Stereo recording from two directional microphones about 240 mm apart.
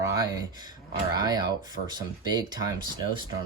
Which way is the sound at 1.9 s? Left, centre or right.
Centre.